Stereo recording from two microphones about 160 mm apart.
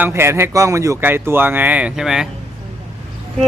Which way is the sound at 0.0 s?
15° right (ahead or behind).